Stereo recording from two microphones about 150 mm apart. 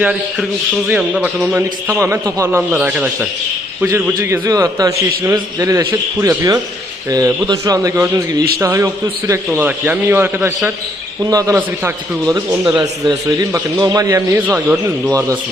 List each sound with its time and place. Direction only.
0.0 s a man's voice: 5° right (ahead or behind)
4.2 s a man's voice: 20° right (ahead or behind)